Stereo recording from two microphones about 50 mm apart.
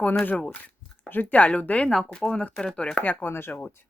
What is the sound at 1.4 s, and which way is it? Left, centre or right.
Speech, left.